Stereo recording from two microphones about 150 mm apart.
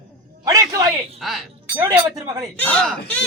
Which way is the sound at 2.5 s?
10° left (ahead or behind).